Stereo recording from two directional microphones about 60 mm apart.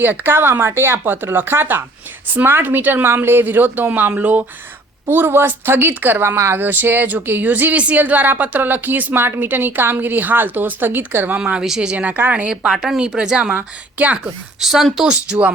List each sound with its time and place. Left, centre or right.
0.0 s speech: right
5.0 s speech: right
6.6 s speech: right
11.6 s a woman's voice: centre
12.6 s a woman's voice: centre; by 14.1 s right
14.6 s speech: centre